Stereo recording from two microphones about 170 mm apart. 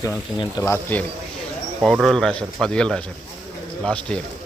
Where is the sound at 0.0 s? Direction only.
20° left (ahead or behind).